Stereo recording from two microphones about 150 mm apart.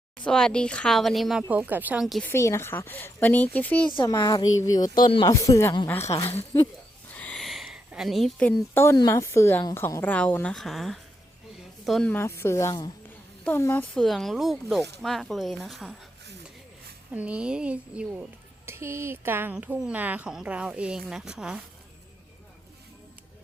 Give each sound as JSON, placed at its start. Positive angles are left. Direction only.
{"t": 0.3, "sound": "speech", "side_deg": 5}
{"t": 2.2, "sound": "speech", "side_deg": 15}
{"t": 4.0, "sound": "a woman's voice", "side_deg": 25}
{"t": 12.1, "sound": "speech", "side_deg": 15}
{"t": 13.9, "sound": "speech", "side_deg": 0}
{"t": 17.1, "sound": "a woman's voice", "side_deg": -10}